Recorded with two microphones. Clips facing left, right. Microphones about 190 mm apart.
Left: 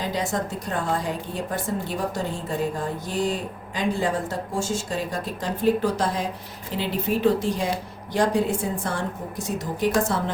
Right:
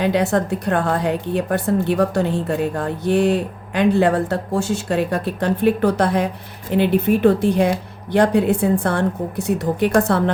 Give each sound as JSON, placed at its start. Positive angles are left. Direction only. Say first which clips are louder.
{"t": 0.0, "sound": "a woman's voice", "louder": "right 8 dB", "side_deg": -65}